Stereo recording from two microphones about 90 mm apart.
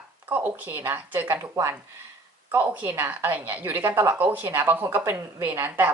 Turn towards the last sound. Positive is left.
turn(degrees=-25)  # may be behind; listen again after turning